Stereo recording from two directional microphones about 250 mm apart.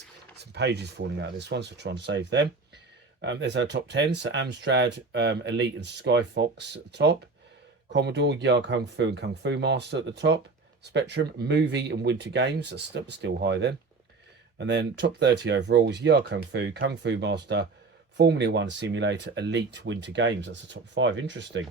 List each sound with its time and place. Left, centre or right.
0.5 s speech: right